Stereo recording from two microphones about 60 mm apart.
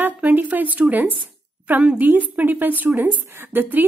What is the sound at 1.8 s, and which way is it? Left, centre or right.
A woman's voice, centre.